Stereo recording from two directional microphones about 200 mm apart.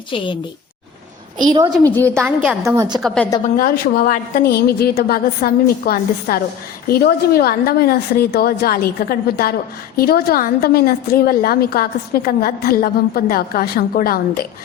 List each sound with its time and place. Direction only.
1.4 s a woman's voice: 20° right (ahead or behind)
1.8 s a woman's voice: 10° left (ahead or behind)
2.2 s a woman's voice: 5° right (ahead or behind)
3.6 s a woman's voice: 45° left (ahead or behind)